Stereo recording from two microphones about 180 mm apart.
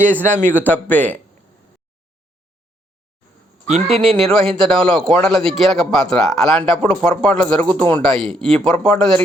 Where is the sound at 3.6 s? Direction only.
35° right (ahead or behind).